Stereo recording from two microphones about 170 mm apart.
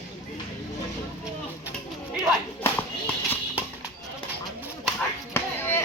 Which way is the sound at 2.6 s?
10° left (ahead or behind).